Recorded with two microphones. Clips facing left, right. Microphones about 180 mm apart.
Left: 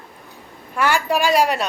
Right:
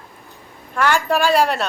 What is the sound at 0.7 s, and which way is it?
Speech, 10° left (ahead or behind).